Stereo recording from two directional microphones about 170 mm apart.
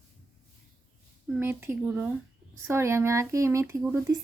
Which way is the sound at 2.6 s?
15° right (ahead or behind).